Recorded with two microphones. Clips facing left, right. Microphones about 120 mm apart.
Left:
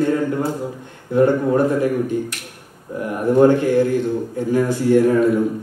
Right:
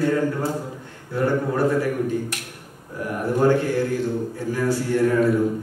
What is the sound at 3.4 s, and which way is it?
A man's voice, 20° left (ahead or behind).